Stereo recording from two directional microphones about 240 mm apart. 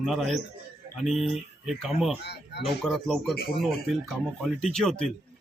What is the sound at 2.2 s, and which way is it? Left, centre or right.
Speech, left.